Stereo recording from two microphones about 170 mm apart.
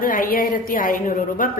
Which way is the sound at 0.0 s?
55° left (ahead or behind).